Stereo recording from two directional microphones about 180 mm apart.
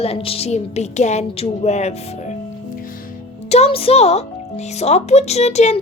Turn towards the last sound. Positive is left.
turn(degrees=40)  # may be behind; listen again after turning